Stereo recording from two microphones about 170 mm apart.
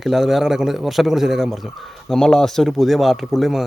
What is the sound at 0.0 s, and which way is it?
Speech, centre (ahead or behind).